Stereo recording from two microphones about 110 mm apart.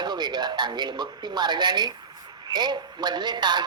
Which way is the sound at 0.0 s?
40° right (ahead or behind).